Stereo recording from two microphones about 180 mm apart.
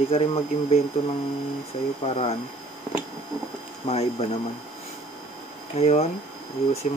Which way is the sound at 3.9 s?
35° left (ahead or behind).